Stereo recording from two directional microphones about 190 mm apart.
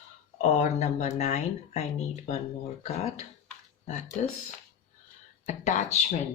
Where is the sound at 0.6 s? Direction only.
35° left (ahead or behind).